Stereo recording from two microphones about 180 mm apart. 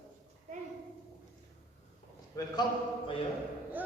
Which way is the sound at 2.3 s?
25° left (ahead or behind).